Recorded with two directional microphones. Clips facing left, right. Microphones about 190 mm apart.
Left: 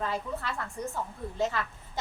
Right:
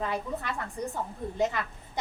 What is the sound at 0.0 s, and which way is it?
A woman's voice, 15° right (ahead or behind).